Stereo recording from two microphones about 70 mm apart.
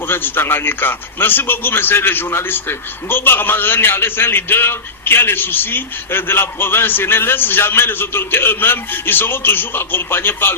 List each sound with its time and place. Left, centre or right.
0.1 s a man's voice: left